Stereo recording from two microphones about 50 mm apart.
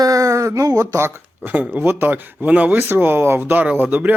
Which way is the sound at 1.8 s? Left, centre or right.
Right.